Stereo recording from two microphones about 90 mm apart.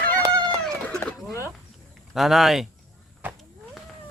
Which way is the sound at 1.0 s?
30° left (ahead or behind).